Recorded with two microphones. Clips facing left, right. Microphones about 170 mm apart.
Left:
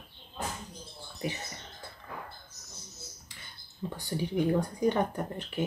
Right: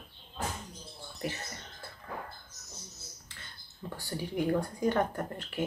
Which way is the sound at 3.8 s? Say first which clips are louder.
Left 4 dB; 20° left (ahead or behind).